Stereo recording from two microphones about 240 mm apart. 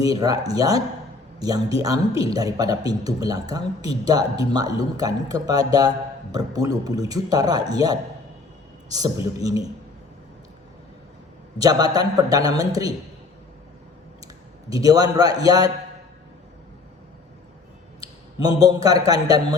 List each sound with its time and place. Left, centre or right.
0.0 s a man's voice: centre
11.5 s a man's voice: centre
14.7 s a man's voice: centre
18.0 s a man's voice: centre